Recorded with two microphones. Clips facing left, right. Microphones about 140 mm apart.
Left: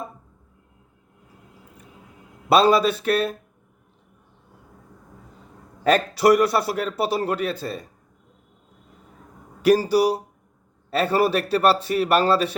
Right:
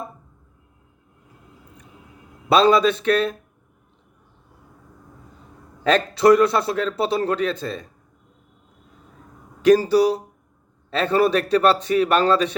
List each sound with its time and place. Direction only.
2.5 s a man's voice: 5° left (ahead or behind)
5.8 s a man's voice: 10° left (ahead or behind)
9.8 s a man's voice: 10° left (ahead or behind)